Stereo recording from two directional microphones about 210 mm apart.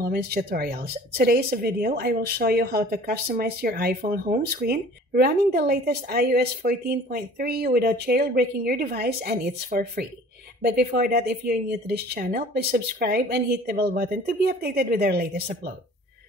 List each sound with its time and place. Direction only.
0.0 s speech: 45° right (ahead or behind)